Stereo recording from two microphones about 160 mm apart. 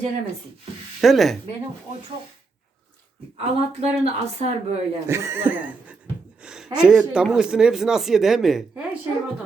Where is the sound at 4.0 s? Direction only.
40° right (ahead or behind).